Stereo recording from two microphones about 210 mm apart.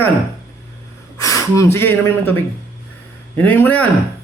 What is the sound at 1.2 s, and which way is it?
Speech, 15° left (ahead or behind).